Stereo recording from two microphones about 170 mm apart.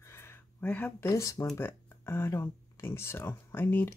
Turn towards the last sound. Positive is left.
turn(degrees=10)  # may be behind; listen again after turning